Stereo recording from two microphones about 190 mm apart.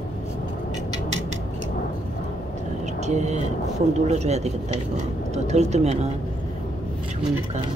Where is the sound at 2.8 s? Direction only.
35° right (ahead or behind).